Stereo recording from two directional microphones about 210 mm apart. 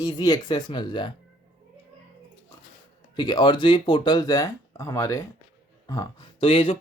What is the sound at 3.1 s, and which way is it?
Speech, 20° left (ahead or behind).